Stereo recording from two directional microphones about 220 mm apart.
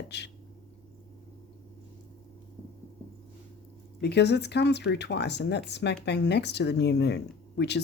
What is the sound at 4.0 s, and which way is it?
Speech, 50° left (ahead or behind).